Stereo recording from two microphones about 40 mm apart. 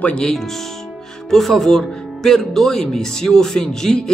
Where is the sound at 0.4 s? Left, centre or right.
Centre.